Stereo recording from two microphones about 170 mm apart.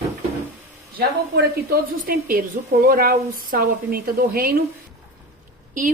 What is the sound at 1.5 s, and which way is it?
Speech, 65° right (ahead or behind).